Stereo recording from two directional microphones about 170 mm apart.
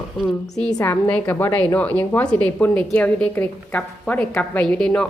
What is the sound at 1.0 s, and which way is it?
A woman's voice, 10° left (ahead or behind).